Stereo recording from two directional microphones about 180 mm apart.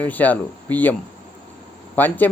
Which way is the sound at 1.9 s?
10° left (ahead or behind).